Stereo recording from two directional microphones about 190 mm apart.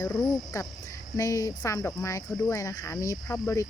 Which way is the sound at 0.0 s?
20° left (ahead or behind).